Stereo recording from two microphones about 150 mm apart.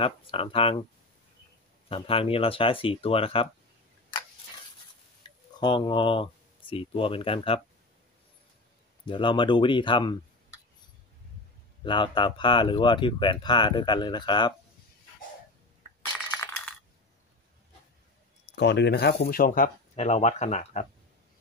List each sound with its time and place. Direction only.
0.0 s speech: 40° left (ahead or behind)
1.9 s speech: 40° left (ahead or behind)
4.1 s a sound: 35° left (ahead or behind)
5.6 s speech: 30° left (ahead or behind)
9.0 s speech: 35° left (ahead or behind)
11.8 s speech: 30° left (ahead or behind)
18.5 s speech: 90° left; by 20.8 s 50° left (ahead or behind)